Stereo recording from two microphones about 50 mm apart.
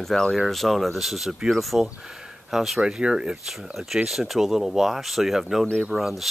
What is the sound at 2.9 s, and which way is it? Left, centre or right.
Speech, centre.